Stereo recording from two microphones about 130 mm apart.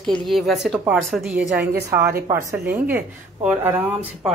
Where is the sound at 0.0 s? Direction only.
Centre (ahead or behind).